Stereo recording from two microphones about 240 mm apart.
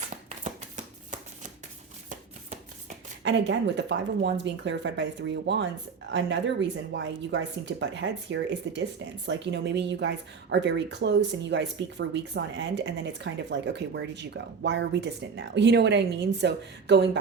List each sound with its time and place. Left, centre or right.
3.2 s speech: right